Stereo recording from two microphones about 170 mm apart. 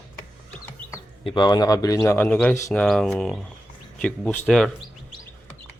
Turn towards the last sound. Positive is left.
turn(degrees=5)  # may be behind; listen again after turning